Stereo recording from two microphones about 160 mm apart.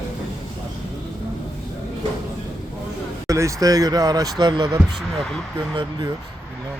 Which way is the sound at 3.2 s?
20° right (ahead or behind).